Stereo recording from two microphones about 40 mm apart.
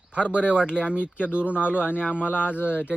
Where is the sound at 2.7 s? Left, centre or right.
Right.